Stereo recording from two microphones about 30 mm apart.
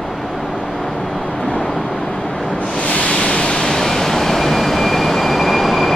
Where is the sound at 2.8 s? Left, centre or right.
Left.